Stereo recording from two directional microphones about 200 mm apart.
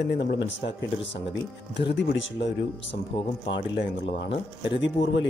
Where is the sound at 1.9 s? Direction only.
60° left (ahead or behind).